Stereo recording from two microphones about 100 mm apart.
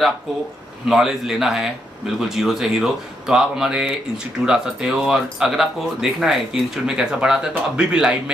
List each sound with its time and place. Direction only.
0.8 s speech: 5° right (ahead or behind)